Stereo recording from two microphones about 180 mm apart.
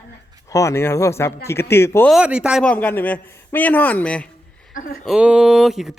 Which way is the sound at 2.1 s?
5° right (ahead or behind).